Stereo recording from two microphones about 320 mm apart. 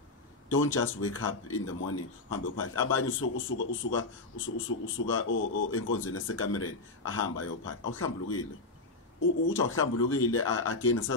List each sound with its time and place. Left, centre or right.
1.0 s a man's voice: left